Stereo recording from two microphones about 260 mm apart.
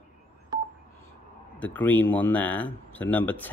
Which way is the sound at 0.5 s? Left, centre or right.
Centre.